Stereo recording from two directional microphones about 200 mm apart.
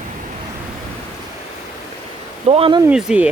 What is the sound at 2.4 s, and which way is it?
Speech, 30° right (ahead or behind).